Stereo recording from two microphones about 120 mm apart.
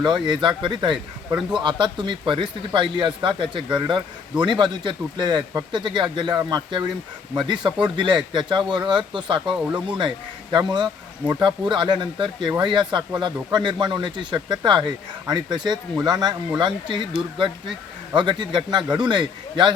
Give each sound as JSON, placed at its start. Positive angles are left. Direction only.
{"t": 0.0, "sound": "speech", "side_deg": -40}